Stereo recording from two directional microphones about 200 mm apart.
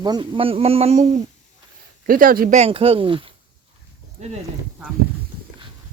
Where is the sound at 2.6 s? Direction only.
30° right (ahead or behind).